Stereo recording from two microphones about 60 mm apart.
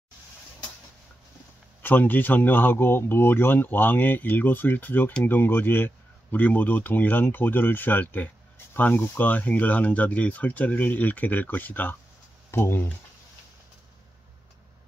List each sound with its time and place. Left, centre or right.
1.8 s a man's voice: left
12.4 s speech: left